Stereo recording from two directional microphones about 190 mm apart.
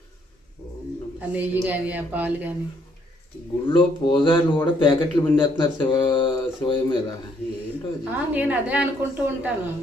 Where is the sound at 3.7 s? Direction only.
25° left (ahead or behind).